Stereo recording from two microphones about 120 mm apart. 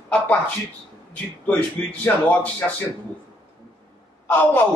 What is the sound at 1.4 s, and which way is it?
Speech, 15° left (ahead or behind).